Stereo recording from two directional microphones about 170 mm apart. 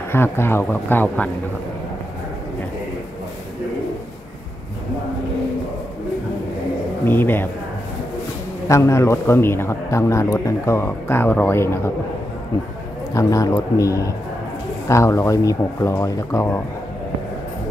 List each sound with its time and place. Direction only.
0.1 s a man's voice: 15° left (ahead or behind)
7.1 s a man's voice: 10° left (ahead or behind)
8.6 s a man's voice: 15° left (ahead or behind)
13.1 s a man's voice: 20° left (ahead or behind)